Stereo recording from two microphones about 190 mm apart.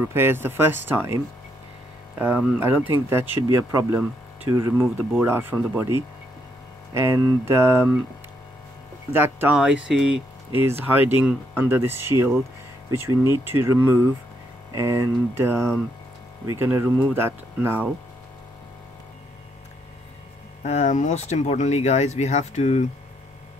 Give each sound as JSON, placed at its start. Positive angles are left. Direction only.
{"t": 0.1, "sound": "speech", "side_deg": -10}
{"t": 9.1, "sound": "speech", "side_deg": -10}
{"t": 20.6, "sound": "speech", "side_deg": 35}